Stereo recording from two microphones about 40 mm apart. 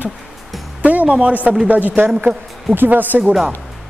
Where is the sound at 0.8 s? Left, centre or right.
Right.